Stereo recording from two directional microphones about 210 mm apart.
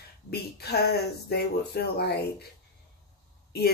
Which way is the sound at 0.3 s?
50° left (ahead or behind).